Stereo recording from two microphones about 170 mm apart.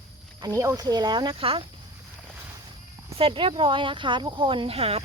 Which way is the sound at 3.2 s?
30° right (ahead or behind).